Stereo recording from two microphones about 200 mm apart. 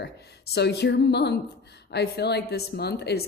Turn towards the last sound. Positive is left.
turn(degrees=55)  # may be behind; listen again after turning